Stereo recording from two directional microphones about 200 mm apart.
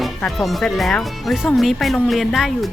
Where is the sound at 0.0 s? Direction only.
Centre (ahead or behind).